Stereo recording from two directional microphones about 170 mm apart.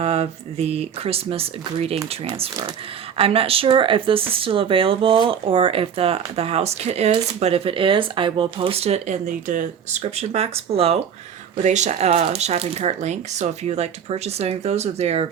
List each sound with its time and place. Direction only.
0.0 s speech: 35° right (ahead or behind)
3.2 s speech: 35° right (ahead or behind)